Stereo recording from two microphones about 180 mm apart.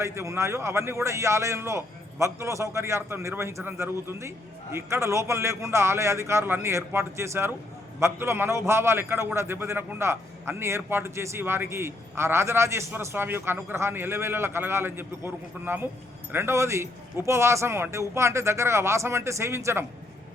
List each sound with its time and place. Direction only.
0.0 s a man's voice: 15° right (ahead or behind)